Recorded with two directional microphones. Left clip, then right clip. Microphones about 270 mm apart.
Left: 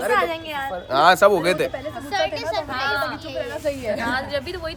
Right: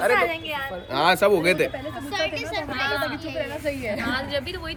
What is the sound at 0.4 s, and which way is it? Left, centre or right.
Speech, left.